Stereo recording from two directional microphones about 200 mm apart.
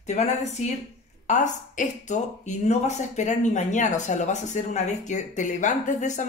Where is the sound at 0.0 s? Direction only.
35° left (ahead or behind).